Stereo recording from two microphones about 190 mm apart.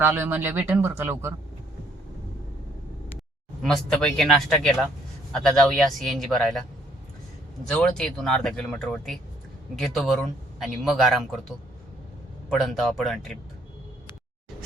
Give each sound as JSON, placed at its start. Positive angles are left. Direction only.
{"t": 0.0, "sound": "speech", "side_deg": -10}
{"t": 3.6, "sound": "speech", "side_deg": 5}
{"t": 7.7, "sound": "speech", "side_deg": 5}
{"t": 12.5, "sound": "speech", "side_deg": 0}